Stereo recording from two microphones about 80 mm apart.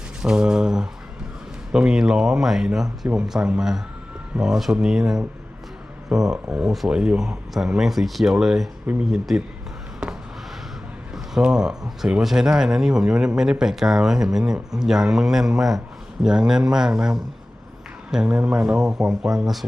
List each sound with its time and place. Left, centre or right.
0.2 s mantra: centre
1.7 s speech: centre
6.1 s speech: centre
10.0 s a sound: centre
11.1 s speech: centre